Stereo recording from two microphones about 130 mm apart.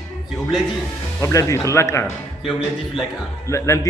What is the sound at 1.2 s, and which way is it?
Speech, 25° left (ahead or behind).